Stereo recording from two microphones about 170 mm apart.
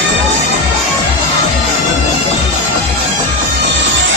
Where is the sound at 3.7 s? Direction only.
90° right.